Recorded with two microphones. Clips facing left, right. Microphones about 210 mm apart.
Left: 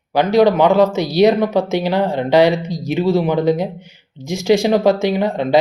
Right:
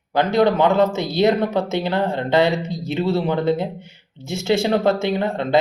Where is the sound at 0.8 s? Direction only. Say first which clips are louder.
Left 4 dB; 25° right (ahead or behind).